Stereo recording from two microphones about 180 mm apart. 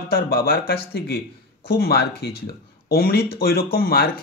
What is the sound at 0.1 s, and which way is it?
Speech, 60° left (ahead or behind).